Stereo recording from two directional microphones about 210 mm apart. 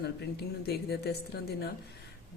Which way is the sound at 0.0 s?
50° left (ahead or behind).